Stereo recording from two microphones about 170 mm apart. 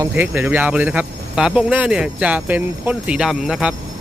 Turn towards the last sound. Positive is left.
turn(degrees=-5)  # may be behind; listen again after turning